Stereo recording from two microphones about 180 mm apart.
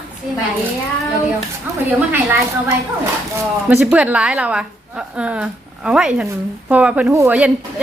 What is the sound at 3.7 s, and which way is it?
A woman's voice, 10° right (ahead or behind).